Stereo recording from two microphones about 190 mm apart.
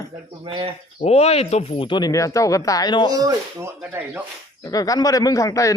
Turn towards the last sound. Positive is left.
turn(degrees=15)  # may be behind; listen again after turning